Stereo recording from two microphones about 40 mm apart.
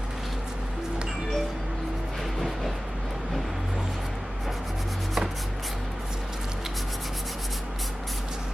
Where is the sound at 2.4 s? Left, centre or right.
Centre.